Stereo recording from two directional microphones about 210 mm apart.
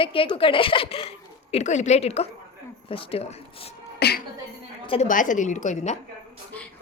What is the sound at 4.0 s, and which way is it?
Music, 50° left (ahead or behind).